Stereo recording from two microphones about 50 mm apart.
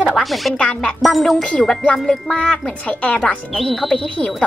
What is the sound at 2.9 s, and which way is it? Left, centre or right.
Speech, left.